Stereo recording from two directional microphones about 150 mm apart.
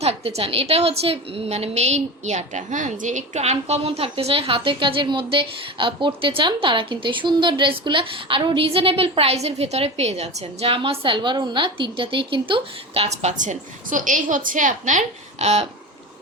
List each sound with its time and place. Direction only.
0.0 s a woman's voice: 40° right (ahead or behind)